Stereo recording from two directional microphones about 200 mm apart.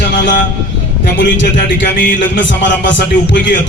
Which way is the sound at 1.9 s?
45° left (ahead or behind).